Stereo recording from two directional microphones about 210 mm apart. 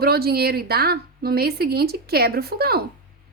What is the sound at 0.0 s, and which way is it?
A woman's voice, 50° right (ahead or behind).